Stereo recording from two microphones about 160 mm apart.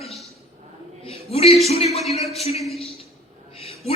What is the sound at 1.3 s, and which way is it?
Music, 40° left (ahead or behind).